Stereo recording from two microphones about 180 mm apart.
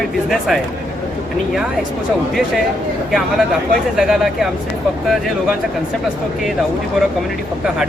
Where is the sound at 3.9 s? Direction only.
Centre (ahead or behind).